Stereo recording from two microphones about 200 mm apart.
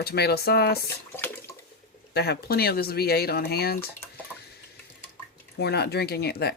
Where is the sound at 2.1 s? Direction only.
50° left (ahead or behind).